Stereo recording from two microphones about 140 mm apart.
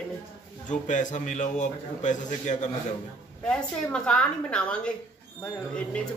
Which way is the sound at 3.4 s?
5° left (ahead or behind).